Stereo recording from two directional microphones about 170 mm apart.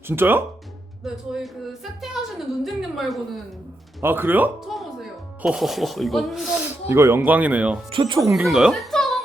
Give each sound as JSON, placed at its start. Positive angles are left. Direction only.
{"t": 0.1, "sound": "speech", "side_deg": -10}
{"t": 1.0, "sound": "speech", "side_deg": 0}
{"t": 4.0, "sound": "speech", "side_deg": -10}
{"t": 6.8, "sound": "speech", "side_deg": -15}
{"t": 7.9, "sound": "speech", "side_deg": -30}
{"t": 8.3, "sound": "speech", "side_deg": -5}